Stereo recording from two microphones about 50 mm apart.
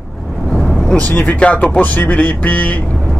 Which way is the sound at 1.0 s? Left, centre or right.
Left.